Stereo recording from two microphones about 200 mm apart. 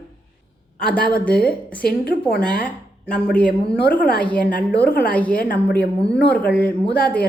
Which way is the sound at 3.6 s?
50° left (ahead or behind).